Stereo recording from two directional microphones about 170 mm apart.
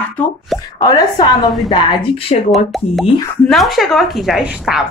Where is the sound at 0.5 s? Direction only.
25° left (ahead or behind).